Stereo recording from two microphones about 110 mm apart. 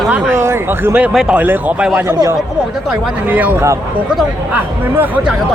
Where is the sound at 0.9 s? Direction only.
10° right (ahead or behind).